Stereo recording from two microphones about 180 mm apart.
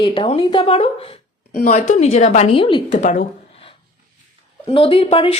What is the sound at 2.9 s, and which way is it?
Speech, 45° left (ahead or behind).